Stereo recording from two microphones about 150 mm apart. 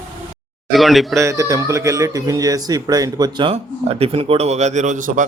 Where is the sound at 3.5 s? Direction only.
40° right (ahead or behind); by 5.2 s 60° right (ahead or behind).